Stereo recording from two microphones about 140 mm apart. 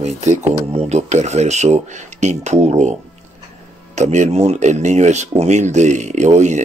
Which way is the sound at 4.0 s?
55° right (ahead or behind).